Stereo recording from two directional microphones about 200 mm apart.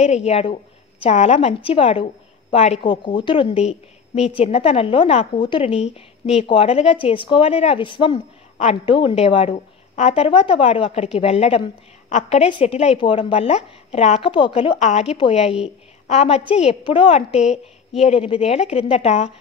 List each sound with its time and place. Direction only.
0.0 s a woman's voice: 35° left (ahead or behind)